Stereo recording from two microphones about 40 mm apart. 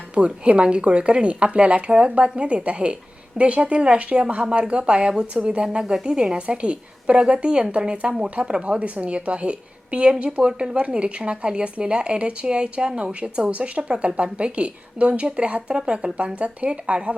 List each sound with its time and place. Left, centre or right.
0.1 s a woman's voice: right
5.8 s a woman's voice: centre; by 15.6 s right
15.7 s a woman's voice: right
16.1 s a woman's voice: right